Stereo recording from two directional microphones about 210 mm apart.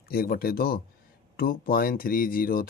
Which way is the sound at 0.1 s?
45° left (ahead or behind).